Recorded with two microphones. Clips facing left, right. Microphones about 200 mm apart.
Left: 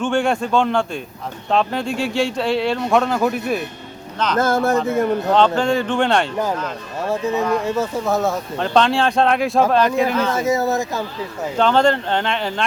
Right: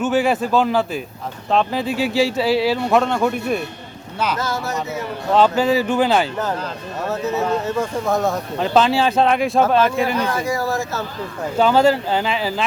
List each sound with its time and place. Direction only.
0.0 s speech: 5° right (ahead or behind)
4.4 s speech: 50° left (ahead or behind)
5.3 s speech: 5° right (ahead or behind)
7.0 s speech: 10° left (ahead or behind)
10.3 s speech: 20° left (ahead or behind)
11.5 s speech: 5° right (ahead or behind)